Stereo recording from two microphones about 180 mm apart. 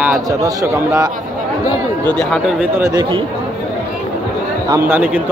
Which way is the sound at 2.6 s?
15° right (ahead or behind).